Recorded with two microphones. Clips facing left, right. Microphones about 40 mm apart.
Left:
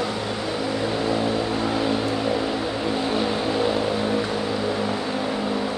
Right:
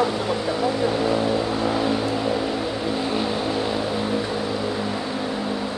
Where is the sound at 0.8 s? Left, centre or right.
Centre.